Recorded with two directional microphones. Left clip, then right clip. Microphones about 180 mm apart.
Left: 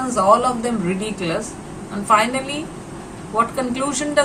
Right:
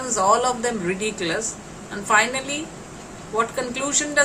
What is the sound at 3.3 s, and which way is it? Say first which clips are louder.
Speech: left 4 dB; 15° right (ahead or behind).